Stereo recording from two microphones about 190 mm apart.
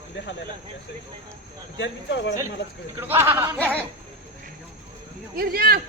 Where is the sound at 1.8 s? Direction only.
70° left (ahead or behind).